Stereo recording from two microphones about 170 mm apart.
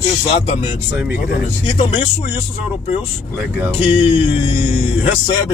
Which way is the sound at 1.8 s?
35° left (ahead or behind).